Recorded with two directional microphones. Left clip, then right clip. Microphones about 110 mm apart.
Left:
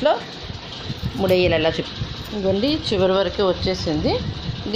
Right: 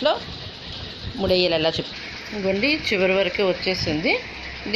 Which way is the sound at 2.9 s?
40° right (ahead or behind).